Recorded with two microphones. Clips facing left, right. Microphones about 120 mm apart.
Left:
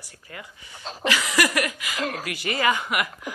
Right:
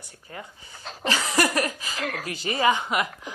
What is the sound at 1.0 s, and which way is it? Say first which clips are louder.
Speech: even; 35° right (ahead or behind).